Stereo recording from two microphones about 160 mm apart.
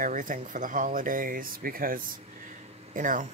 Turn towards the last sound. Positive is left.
turn(degrees=-55)  # may be behind; listen again after turning